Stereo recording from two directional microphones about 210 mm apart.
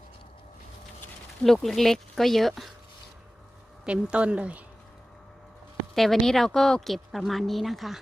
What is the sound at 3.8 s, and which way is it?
Speech, 5° right (ahead or behind).